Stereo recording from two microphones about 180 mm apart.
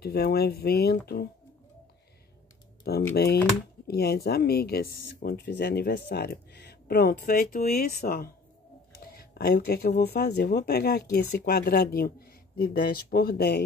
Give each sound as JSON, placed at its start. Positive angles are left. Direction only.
{"t": 0.0, "sound": "speech", "side_deg": 60}
{"t": 2.8, "sound": "speech", "side_deg": 60}